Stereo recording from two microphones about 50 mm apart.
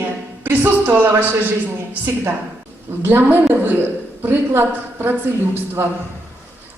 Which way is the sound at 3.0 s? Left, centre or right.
Right.